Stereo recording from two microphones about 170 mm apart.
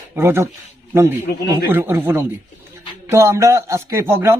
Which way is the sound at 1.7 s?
15° right (ahead or behind).